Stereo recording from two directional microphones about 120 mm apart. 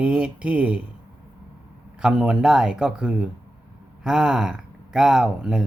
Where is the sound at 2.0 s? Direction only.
5° right (ahead or behind).